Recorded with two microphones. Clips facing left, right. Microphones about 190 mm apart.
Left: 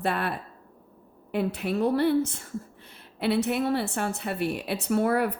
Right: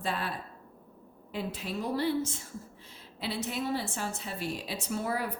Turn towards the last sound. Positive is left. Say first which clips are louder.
# left 9 dB
turn(degrees=60)  # may be behind; listen again after turning